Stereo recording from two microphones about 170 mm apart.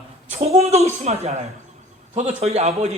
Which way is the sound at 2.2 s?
40° right (ahead or behind).